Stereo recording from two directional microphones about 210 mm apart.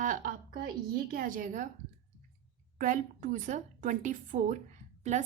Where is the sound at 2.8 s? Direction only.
40° right (ahead or behind).